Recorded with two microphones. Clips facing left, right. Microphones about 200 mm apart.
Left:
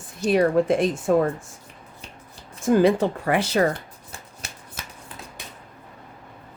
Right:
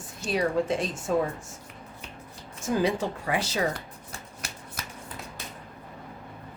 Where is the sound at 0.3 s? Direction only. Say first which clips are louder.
Left 7 dB; 55° left (ahead or behind).